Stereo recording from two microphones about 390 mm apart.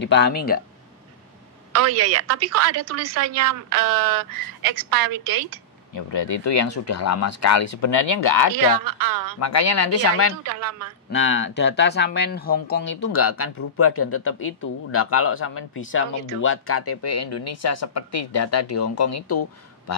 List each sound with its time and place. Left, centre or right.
0.0 s speech: left
1.7 s a woman's voice: right
6.1 s speech: left
8.5 s a woman's voice: right
9.4 s speech: left
10.4 s a woman's voice: right
11.1 s speech: left